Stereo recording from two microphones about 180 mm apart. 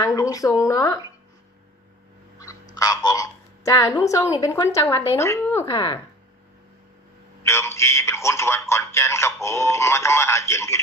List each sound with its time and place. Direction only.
0.0 s a woman's voice: 20° left (ahead or behind)
2.7 s a woman's voice: 20° left (ahead or behind)
5.7 s a woman's voice: 25° left (ahead or behind)
7.4 s a man's voice: 15° left (ahead or behind)